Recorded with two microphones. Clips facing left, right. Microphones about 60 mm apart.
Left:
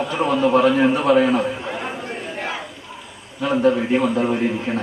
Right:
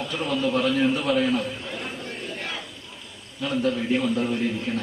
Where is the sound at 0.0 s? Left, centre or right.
Left.